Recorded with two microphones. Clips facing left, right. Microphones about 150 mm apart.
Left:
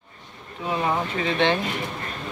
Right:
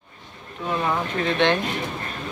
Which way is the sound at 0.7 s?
15° left (ahead or behind).